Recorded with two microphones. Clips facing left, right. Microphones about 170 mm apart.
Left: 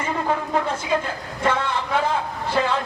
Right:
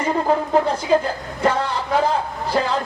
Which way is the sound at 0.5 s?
35° right (ahead or behind).